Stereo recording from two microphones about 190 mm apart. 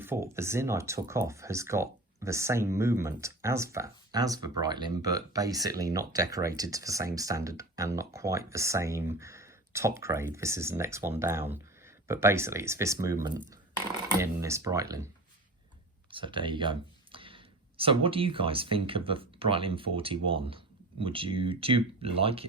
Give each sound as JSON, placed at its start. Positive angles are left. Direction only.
{"t": 0.0, "sound": "speech", "side_deg": -15}
{"t": 14.2, "sound": "speech", "side_deg": -15}